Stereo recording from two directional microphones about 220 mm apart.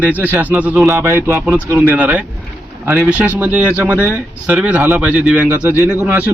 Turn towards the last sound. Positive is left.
turn(degrees=-5)  # may be behind; listen again after turning